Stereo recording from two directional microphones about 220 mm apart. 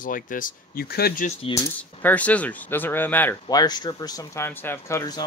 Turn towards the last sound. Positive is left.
turn(degrees=15)  # may be behind; listen again after turning